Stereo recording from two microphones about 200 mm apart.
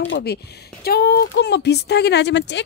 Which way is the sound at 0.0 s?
60° left (ahead or behind).